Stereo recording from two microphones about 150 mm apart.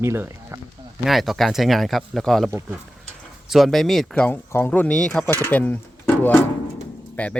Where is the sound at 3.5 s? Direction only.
Centre (ahead or behind).